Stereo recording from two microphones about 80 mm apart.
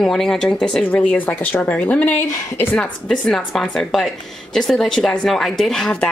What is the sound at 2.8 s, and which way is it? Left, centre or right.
A woman's voice, centre.